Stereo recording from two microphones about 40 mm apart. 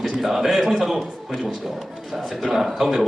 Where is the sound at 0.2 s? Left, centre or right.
Centre.